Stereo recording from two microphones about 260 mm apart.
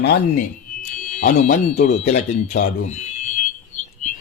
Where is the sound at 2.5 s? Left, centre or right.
Left.